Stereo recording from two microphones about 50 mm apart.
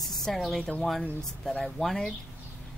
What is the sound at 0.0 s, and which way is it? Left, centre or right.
Speech, centre.